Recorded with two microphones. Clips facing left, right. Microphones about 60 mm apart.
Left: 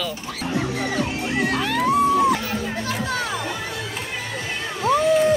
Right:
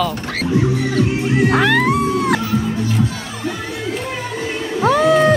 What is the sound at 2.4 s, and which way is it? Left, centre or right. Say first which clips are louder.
Music: right 6 dB; left.